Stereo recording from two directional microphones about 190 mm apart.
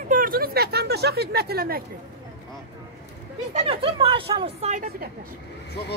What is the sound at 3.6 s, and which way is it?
Speech, 30° right (ahead or behind).